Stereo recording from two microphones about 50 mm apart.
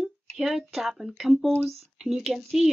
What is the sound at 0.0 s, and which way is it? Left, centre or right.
A woman's voice, centre.